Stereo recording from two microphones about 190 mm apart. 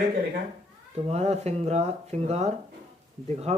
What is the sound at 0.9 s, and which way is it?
Speech, 35° right (ahead or behind).